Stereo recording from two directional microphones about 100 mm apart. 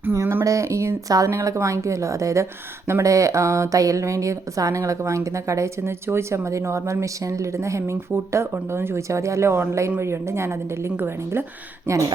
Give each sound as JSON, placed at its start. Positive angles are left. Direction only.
{"t": 0.0, "sound": "speech", "side_deg": -25}